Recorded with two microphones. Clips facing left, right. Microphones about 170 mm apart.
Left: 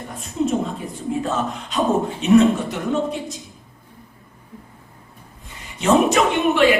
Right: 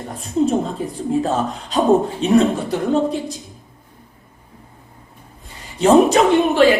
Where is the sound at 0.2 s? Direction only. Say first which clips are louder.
Right 4 dB; 35° right (ahead or behind).